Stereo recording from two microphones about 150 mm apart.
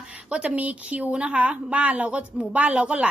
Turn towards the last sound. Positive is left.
turn(degrees=-10)  # may be behind; listen again after turning